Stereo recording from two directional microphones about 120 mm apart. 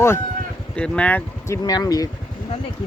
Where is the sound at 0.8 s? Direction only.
10° left (ahead or behind).